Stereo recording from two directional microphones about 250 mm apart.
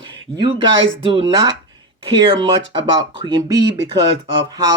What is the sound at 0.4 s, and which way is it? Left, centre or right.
Speech, centre.